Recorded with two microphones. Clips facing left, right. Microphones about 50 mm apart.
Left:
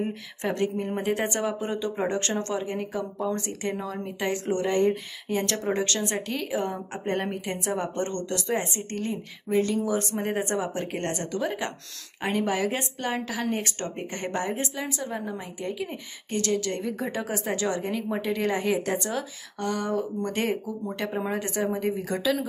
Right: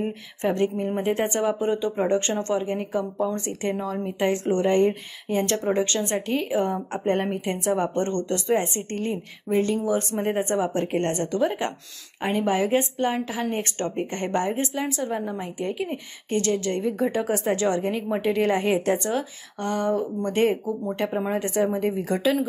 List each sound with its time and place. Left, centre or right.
0.0 s a woman's voice: right
10.6 s a woman's voice: right
12.2 s a woman's voice: right